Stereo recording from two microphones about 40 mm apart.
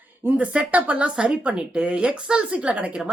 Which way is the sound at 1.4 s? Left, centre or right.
Right.